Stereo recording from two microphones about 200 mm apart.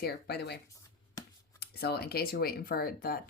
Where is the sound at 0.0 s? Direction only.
55° left (ahead or behind).